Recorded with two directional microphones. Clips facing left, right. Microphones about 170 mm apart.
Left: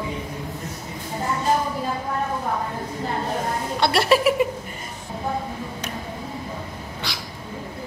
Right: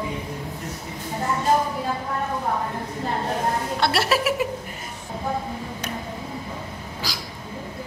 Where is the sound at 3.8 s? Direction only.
Centre (ahead or behind).